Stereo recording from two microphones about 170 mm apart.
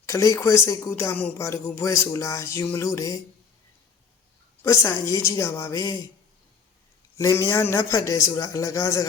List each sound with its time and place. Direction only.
0.0 s speech: 20° left (ahead or behind)
4.6 s speech: 15° left (ahead or behind)
7.2 s a man's voice: 15° left (ahead or behind)